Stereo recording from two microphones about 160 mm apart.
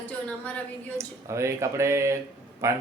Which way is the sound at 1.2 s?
20° right (ahead or behind).